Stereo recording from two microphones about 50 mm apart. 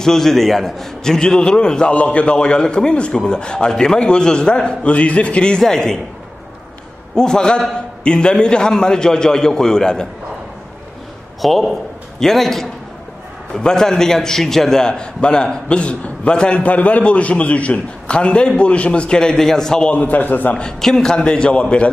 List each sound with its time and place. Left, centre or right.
0.0 s a man's voice: centre
5.6 s a man's voice: centre
7.2 s a man's voice: centre
11.4 s a man's voice: centre
19.9 s a man's voice: left
20.8 s a man's voice: centre